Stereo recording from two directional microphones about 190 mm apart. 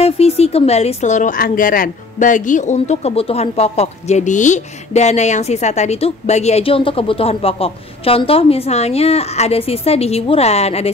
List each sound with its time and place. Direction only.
0.0 s speech: 30° left (ahead or behind)